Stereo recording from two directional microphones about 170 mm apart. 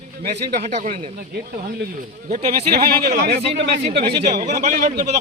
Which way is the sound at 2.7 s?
65° right (ahead or behind).